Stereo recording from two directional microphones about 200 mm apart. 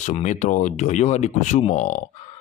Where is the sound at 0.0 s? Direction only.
35° left (ahead or behind).